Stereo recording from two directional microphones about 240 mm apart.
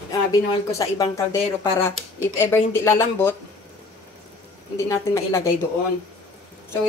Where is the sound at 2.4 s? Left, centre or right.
Centre.